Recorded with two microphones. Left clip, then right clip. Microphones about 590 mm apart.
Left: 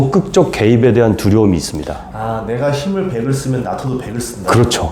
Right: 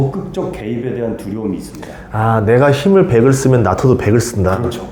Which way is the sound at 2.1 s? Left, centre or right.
Right.